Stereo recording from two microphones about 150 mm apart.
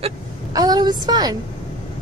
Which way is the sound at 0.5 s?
25° right (ahead or behind).